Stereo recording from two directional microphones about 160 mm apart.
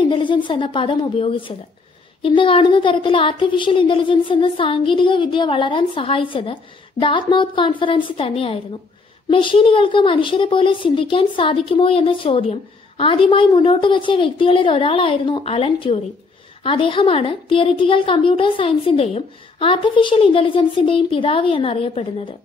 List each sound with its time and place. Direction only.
0.0 s a woman's voice: 30° left (ahead or behind)